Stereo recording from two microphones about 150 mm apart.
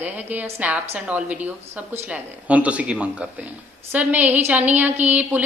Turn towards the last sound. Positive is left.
turn(degrees=-10)  # may be behind; listen again after turning